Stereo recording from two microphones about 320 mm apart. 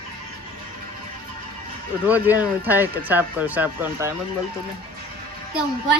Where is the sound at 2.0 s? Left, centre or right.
Centre.